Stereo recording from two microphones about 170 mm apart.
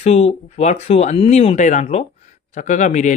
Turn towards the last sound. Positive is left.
turn(degrees=45)  # may be behind; listen again after turning